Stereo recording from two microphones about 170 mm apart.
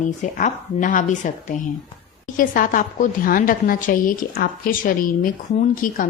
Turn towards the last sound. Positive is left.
turn(degrees=55)  # may be behind; listen again after turning